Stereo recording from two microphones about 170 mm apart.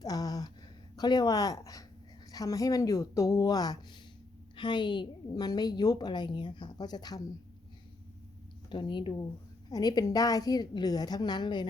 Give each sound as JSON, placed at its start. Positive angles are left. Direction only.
{"t": 0.0, "sound": "a sound", "side_deg": 20}
{"t": 0.9, "sound": "a woman's voice", "side_deg": 25}
{"t": 8.7, "sound": "a woman's voice", "side_deg": 30}